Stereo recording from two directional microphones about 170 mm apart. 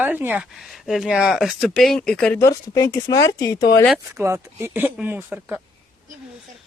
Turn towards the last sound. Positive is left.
turn(degrees=-10)  # may be behind; listen again after turning